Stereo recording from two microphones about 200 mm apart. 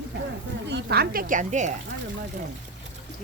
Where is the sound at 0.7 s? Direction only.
60° right (ahead or behind); by 1.7 s 40° right (ahead or behind).